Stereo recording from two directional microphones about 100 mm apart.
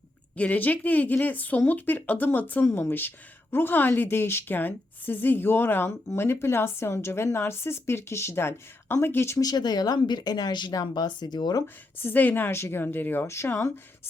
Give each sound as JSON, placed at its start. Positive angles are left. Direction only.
{"t": 0.3, "sound": "a woman's voice", "side_deg": 15}
{"t": 9.4, "sound": "speech", "side_deg": 40}
{"t": 11.9, "sound": "a woman's voice", "side_deg": 20}